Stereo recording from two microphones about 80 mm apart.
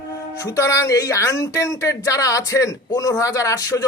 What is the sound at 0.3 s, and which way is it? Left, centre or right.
Speech, left.